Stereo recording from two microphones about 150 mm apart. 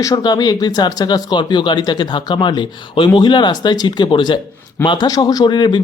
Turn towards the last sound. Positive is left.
turn(degrees=30)  # may be behind; listen again after turning